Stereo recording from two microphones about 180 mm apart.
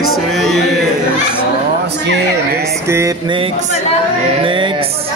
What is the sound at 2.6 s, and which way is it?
Speech, 15° right (ahead or behind).